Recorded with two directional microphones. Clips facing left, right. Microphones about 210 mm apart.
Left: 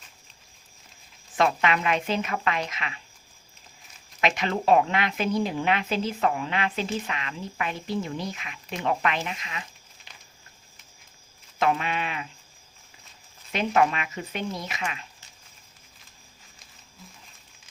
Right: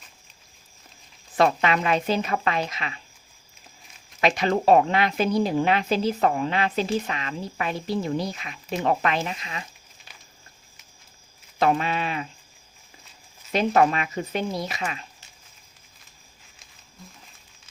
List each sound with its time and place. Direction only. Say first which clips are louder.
1.4 s a woman's voice: right 3 dB; 35° right (ahead or behind)
4.2 s a woman's voice: right 4 dB; 35° right (ahead or behind)
11.6 s a woman's voice: right 3 dB; 35° right (ahead or behind)
13.5 s a woman's voice: right 3 dB; 35° right (ahead or behind)